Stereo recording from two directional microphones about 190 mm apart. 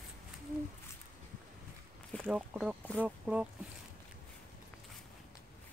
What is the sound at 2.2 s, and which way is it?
Speech, 5° right (ahead or behind).